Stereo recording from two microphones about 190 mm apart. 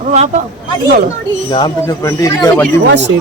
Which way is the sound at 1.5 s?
20° left (ahead or behind).